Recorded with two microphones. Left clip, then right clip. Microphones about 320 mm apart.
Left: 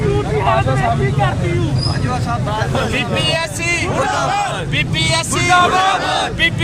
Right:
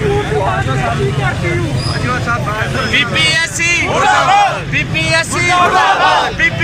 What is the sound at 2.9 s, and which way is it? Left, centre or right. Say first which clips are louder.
Speech: right 9 dB; left.